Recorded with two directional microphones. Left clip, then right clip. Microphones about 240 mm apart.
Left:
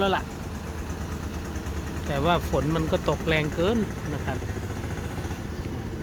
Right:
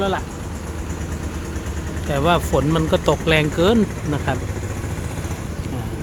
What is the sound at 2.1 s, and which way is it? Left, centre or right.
Speech, centre.